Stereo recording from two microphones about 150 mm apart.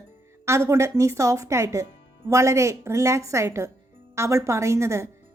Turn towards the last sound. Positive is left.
turn(degrees=-20)  # may be behind; listen again after turning